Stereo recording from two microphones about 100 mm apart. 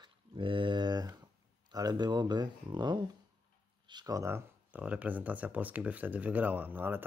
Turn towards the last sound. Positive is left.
turn(degrees=-20)  # may be behind; listen again after turning